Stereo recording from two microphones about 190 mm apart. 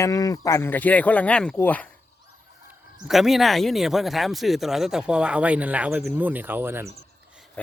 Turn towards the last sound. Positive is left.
turn(degrees=-10)  # may be behind; listen again after turning